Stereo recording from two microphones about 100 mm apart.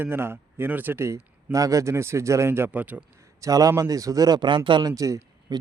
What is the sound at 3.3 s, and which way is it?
A man's voice, 35° right (ahead or behind).